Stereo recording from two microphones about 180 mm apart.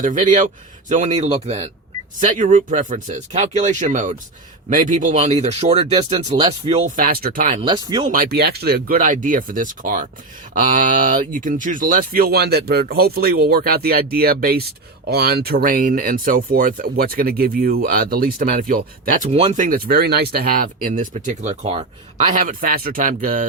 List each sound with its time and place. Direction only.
0.0 s speech: 45° right (ahead or behind)
6.8 s speech: 50° right (ahead or behind)
7.6 s speech: 25° right (ahead or behind)
8.1 s speech: 55° right (ahead or behind); by 19.6 s 35° right (ahead or behind)
19.6 s speech: 55° right (ahead or behind); by 22.3 s 35° right (ahead or behind)
22.4 s speech: 50° right (ahead or behind)